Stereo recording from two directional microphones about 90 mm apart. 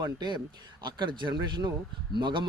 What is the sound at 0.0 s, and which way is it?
Speech, 50° right (ahead or behind).